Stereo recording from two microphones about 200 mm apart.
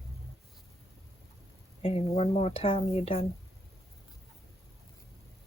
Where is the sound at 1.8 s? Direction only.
30° left (ahead or behind).